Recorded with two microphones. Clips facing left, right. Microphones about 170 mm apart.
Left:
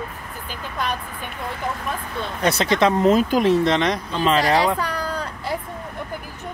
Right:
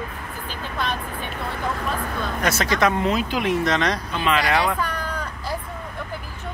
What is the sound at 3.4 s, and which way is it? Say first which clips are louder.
Speech: left 4 dB; 30° left (ahead or behind).